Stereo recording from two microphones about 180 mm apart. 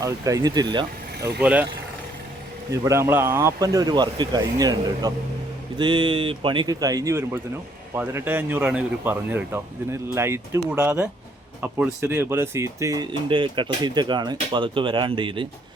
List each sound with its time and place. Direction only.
0.0 s speech: 20° right (ahead or behind)
1.4 s speech: 10° right (ahead or behind)
2.8 s speech: 15° right (ahead or behind)